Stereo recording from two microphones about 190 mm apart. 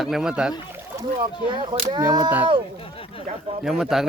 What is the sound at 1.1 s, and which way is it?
Speech, 25° right (ahead or behind).